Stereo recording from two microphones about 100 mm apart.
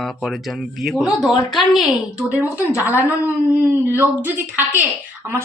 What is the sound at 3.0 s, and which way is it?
A woman's voice, 20° right (ahead or behind).